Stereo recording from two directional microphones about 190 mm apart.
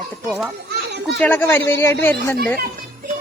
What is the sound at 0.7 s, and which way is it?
Children playing, 60° right (ahead or behind).